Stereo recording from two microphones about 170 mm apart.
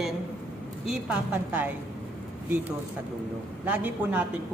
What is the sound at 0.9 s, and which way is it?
Speech, 5° right (ahead or behind).